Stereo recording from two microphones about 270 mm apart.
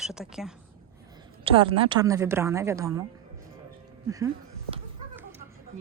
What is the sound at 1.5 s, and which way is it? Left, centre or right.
Speech, centre.